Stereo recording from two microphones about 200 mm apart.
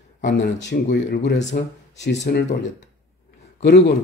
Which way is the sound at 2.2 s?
35° left (ahead or behind).